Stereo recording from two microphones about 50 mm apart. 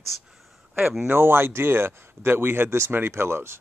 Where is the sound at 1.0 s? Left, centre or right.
Right.